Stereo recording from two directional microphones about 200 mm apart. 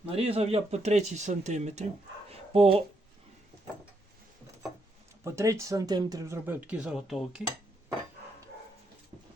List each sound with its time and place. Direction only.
0.1 s speech: 30° right (ahead or behind)
2.3 s dog: 30° right (ahead or behind)
5.2 s speech: 15° right (ahead or behind)